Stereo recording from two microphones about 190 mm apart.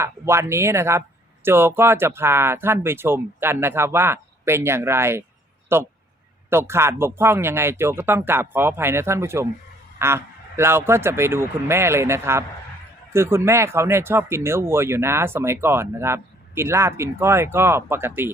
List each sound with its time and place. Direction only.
0.0 s speech: 15° right (ahead or behind)